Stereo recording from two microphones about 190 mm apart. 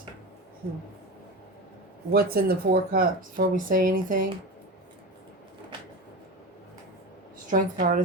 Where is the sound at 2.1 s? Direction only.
55° right (ahead or behind).